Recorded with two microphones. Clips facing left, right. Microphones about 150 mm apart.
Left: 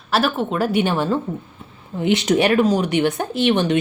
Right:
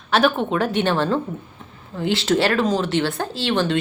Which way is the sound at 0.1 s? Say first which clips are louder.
Right 1 dB; centre (ahead or behind).